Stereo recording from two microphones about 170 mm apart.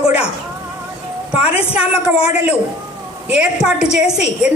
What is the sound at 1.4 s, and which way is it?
A woman's voice, 5° right (ahead or behind).